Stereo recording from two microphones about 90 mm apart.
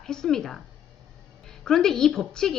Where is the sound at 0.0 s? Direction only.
5° left (ahead or behind).